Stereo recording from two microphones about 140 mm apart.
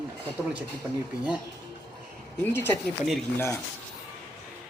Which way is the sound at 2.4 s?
15° left (ahead or behind).